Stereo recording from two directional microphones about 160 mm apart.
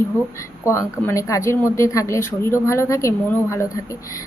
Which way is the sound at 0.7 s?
20° left (ahead or behind).